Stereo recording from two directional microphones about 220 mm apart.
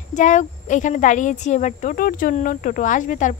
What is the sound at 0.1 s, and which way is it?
Speech, 35° left (ahead or behind).